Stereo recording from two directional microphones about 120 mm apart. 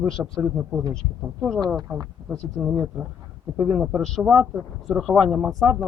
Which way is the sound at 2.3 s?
5° right (ahead or behind).